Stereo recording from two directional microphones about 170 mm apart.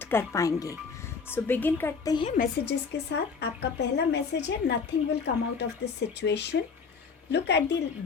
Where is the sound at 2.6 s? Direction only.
80° left.